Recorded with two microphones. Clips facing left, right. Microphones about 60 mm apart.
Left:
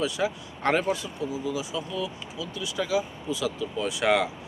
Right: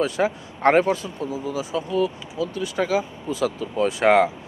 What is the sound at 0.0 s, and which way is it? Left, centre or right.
Speech, right.